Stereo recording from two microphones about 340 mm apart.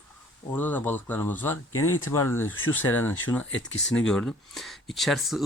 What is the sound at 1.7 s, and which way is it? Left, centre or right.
Speech, left.